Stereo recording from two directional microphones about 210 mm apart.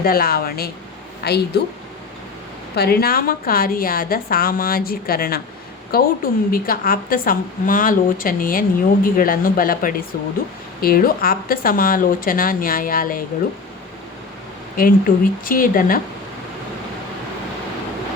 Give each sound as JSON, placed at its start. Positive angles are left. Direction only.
{"t": 0.0, "sound": "a woman's voice", "side_deg": 45}
{"t": 2.7, "sound": "a woman's voice", "side_deg": 50}
{"t": 14.8, "sound": "a woman's voice", "side_deg": 40}